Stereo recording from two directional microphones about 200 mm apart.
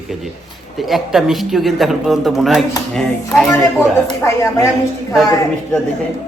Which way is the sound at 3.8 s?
15° left (ahead or behind).